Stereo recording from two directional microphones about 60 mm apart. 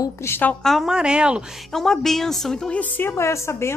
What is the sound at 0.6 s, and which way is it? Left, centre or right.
Speech, centre.